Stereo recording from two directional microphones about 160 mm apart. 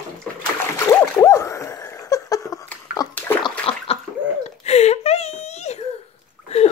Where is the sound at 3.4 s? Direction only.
35° left (ahead or behind).